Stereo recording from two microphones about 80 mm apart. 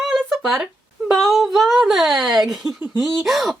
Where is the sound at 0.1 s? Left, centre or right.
Centre.